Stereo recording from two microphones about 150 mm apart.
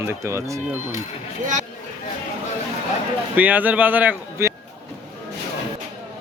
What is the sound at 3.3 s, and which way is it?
A man's voice, 10° right (ahead or behind).